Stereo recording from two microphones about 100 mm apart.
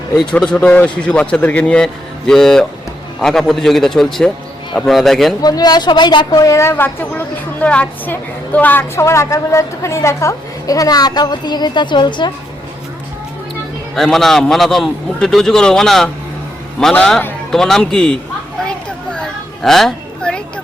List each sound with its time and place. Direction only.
0.3 s a man's voice: 10° left (ahead or behind)
5.4 s speech: 40° left (ahead or behind)
13.9 s a man's voice: 5° left (ahead or behind)
19.1 s children playing: 5° left (ahead or behind)